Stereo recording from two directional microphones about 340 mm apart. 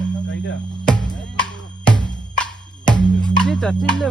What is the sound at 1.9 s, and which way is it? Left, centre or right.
Music, centre.